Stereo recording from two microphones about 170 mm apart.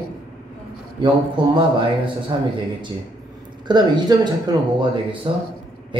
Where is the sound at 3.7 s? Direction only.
25° right (ahead or behind).